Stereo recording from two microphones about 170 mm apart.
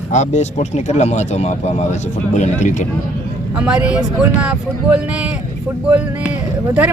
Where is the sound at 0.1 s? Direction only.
45° left (ahead or behind).